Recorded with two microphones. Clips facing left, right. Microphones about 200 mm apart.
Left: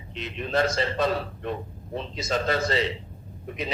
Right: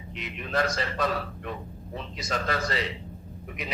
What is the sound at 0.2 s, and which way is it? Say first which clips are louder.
A man's voice: left 3 dB; 25° left (ahead or behind).